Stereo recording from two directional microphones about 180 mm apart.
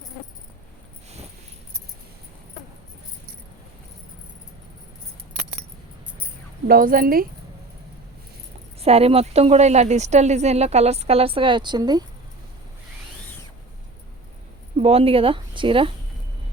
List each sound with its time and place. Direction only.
6.7 s speech: 55° right (ahead or behind)
8.8 s speech: 35° right (ahead or behind)
14.8 s speech: 35° right (ahead or behind)